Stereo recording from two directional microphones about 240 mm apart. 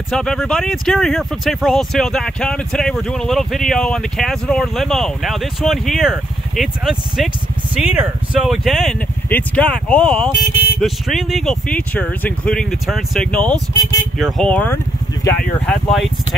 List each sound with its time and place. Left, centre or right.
0.1 s speech: centre
15.2 s speech: left
15.6 s speech: centre